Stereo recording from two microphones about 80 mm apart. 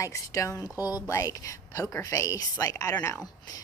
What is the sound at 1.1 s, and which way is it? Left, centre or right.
A woman's voice, left.